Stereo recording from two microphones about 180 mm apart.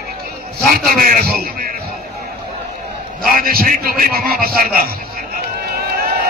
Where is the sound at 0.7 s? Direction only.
55° right (ahead or behind).